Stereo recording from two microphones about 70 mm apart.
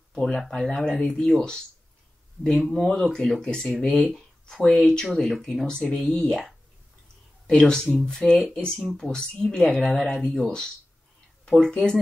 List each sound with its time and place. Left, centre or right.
0.1 s speech: centre